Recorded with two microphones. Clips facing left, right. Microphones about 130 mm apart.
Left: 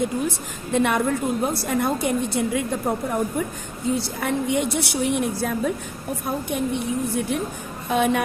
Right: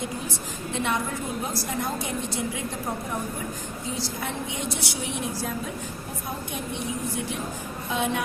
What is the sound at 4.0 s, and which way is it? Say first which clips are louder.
A woman's voice: left 6 dB; 60° left (ahead or behind).